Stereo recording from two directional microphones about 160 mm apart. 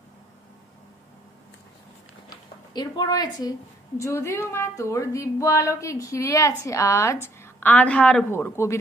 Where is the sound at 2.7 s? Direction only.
25° left (ahead or behind).